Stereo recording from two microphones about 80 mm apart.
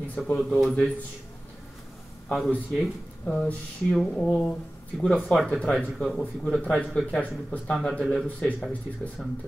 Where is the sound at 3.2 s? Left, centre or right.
Centre.